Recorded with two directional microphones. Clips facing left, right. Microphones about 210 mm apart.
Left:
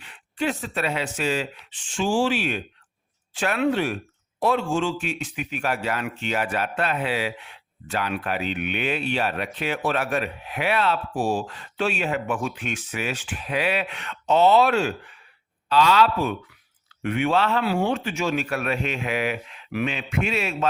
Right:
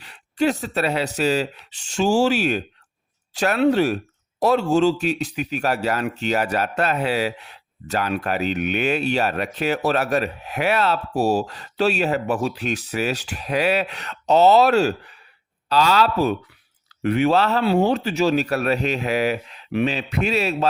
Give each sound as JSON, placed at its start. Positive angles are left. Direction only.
{"t": 0.0, "sound": "speech", "side_deg": -40}